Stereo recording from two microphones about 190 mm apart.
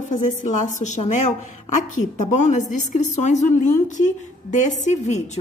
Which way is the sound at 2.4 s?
40° left (ahead or behind).